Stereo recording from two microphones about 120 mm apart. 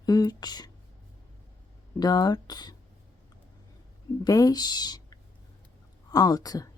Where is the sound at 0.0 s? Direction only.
35° left (ahead or behind).